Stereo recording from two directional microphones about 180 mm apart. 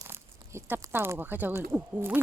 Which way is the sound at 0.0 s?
15° right (ahead or behind).